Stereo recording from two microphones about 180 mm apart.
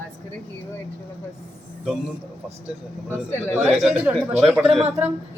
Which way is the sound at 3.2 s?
10° left (ahead or behind).